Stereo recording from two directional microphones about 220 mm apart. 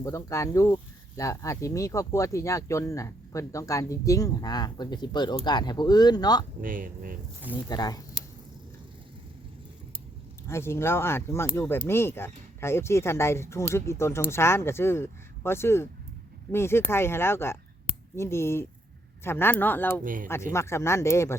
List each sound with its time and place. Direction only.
0.0 s speech: 15° left (ahead or behind)
6.6 s speech: 40° right (ahead or behind)
7.7 s speech: 15° left (ahead or behind)
10.5 s speech: 10° left (ahead or behind)